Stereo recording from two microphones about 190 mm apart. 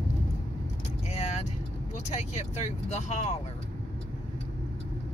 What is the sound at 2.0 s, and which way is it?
Speech, 35° left (ahead or behind).